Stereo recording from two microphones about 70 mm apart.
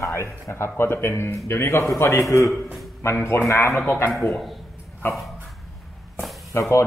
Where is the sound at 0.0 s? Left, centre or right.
Left.